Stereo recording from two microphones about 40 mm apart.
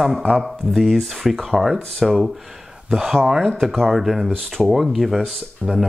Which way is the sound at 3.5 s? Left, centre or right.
Centre.